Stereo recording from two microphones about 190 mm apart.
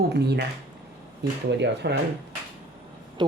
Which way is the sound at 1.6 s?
60° right (ahead or behind).